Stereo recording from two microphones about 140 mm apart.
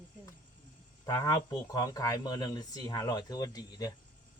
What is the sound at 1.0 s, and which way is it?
Speech, 25° left (ahead or behind).